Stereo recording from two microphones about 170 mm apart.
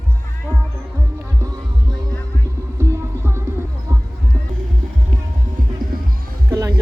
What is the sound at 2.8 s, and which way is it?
Music, 15° right (ahead or behind).